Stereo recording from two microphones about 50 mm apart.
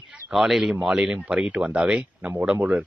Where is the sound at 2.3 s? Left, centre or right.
Right.